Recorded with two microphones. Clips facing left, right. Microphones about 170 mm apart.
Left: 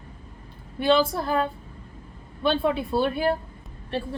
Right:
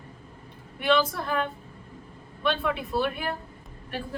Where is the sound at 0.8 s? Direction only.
30° left (ahead or behind).